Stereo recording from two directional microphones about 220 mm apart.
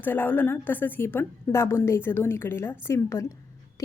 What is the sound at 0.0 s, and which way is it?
A woman's voice, 10° left (ahead or behind).